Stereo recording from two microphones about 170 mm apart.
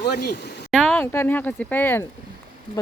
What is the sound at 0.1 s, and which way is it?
Speech, 65° left (ahead or behind).